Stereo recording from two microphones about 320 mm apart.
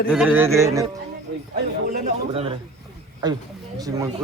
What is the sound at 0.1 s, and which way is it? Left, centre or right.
Speech, centre.